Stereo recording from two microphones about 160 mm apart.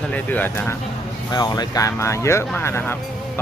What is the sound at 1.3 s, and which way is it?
Speech, 25° left (ahead or behind).